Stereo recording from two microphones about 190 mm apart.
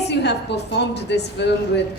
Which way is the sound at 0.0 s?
60° left (ahead or behind).